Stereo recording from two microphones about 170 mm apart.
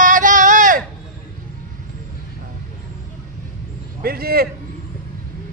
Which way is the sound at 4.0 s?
60° right (ahead or behind).